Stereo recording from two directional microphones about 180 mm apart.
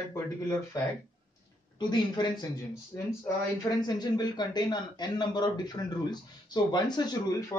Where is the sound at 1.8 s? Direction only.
25° left (ahead or behind).